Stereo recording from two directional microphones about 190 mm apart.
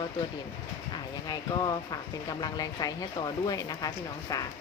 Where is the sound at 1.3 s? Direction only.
20° left (ahead or behind).